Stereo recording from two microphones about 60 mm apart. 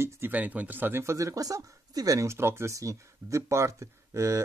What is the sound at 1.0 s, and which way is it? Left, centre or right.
Speech, right.